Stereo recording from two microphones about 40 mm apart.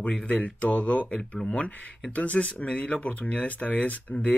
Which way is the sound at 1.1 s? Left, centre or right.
Centre.